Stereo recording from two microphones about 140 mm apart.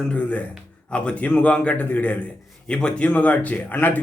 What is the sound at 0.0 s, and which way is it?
A man's voice, 10° left (ahead or behind).